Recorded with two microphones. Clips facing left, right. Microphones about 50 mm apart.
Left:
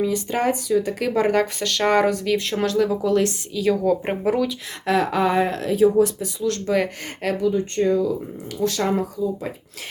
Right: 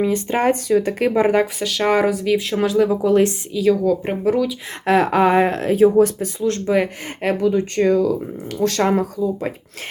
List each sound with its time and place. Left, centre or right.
0.0 s speech: right
1.1 s speech: centre
1.6 s speech: centre
2.7 s speech: centre
3.5 s speech: centre
4.9 s speech: right
7.5 s speech: right
8.5 s speech: right